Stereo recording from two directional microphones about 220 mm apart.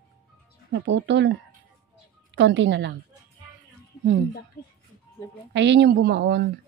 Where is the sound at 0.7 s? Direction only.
55° right (ahead or behind).